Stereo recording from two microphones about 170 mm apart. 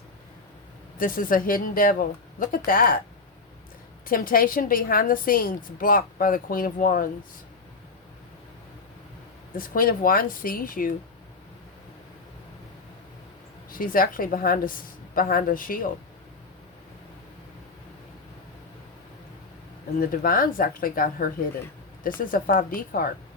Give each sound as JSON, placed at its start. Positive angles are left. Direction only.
{"t": 0.9, "sound": "a woman's voice", "side_deg": 55}
{"t": 4.0, "sound": "a woman's voice", "side_deg": 55}
{"t": 9.6, "sound": "a woman's voice", "side_deg": 55}
{"t": 13.7, "sound": "a woman's voice", "side_deg": 55}
{"t": 20.0, "sound": "a woman's voice", "side_deg": 55}